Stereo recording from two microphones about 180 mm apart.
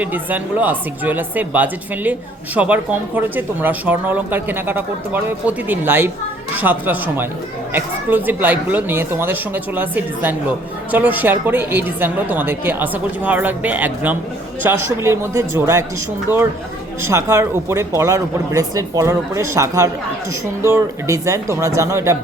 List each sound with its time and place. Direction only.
0.0 s speech: 10° right (ahead or behind)
17.0 s speech: 15° right (ahead or behind)